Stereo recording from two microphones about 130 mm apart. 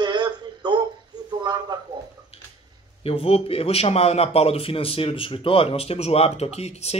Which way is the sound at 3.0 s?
50° left (ahead or behind).